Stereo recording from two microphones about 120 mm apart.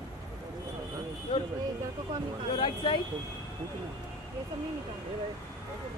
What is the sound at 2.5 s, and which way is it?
Speech, 45° left (ahead or behind).